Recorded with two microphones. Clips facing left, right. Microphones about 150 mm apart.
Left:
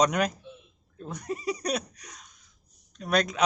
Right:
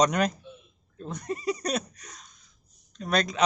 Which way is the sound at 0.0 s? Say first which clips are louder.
Right 1 dB; 10° left (ahead or behind).